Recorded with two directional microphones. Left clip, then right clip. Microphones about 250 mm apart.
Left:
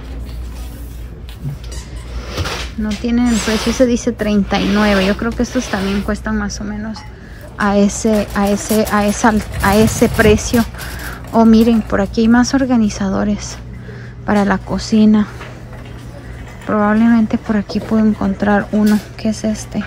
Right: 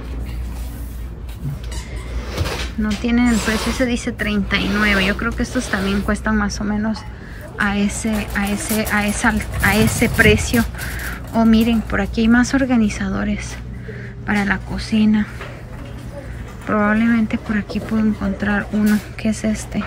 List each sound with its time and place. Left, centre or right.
2.2 s speech: centre
3.8 s speech: centre
7.5 s speech: centre
16.6 s speech: centre